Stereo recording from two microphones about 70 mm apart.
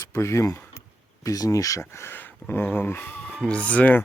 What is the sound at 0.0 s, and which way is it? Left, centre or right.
Speech, left.